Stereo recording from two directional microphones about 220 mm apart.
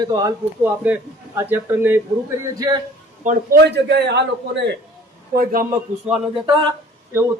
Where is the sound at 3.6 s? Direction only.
50° right (ahead or behind).